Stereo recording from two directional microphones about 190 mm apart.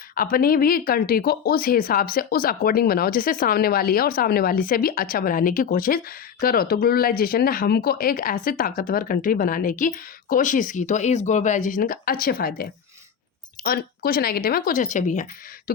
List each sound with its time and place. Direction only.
0.2 s speech: 50° left (ahead or behind)
13.7 s speech: 55° left (ahead or behind)